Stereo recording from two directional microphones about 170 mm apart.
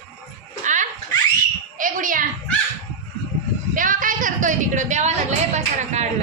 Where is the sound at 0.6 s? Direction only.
45° right (ahead or behind).